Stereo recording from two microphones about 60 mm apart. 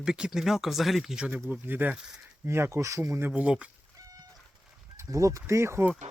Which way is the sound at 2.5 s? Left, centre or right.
Right.